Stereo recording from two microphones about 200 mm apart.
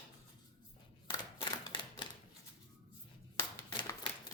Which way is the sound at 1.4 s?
25° left (ahead or behind).